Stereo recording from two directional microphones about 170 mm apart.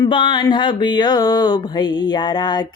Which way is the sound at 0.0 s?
30° left (ahead or behind).